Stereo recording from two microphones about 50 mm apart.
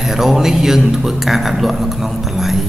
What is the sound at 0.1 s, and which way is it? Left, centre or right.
A man's voice, centre.